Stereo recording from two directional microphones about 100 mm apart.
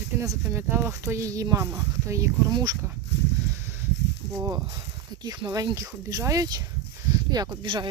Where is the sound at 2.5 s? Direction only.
40° right (ahead or behind).